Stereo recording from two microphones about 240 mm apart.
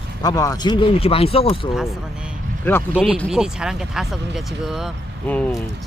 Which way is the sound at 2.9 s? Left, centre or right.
Centre.